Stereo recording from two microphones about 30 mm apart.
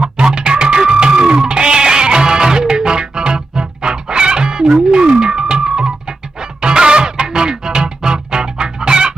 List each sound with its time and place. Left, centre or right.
0.4 s music: right